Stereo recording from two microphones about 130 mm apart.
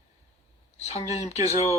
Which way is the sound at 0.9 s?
55° left (ahead or behind).